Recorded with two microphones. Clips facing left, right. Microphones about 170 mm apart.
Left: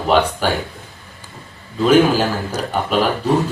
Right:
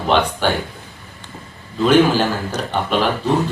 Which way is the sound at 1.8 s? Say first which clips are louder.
Left 1 dB; 5° left (ahead or behind).